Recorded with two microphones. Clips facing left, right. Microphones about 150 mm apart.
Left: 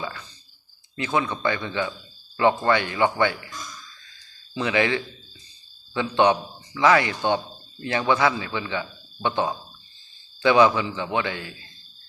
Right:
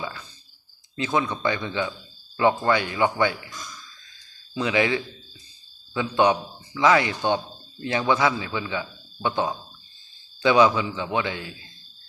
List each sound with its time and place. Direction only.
0.9 s a man's voice: 15° right (ahead or behind)
4.5 s a man's voice: 15° right (ahead or behind)